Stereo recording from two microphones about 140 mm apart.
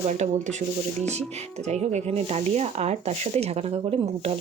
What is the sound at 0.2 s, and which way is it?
Speech, 55° right (ahead or behind).